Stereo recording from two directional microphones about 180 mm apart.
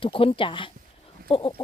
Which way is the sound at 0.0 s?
30° left (ahead or behind).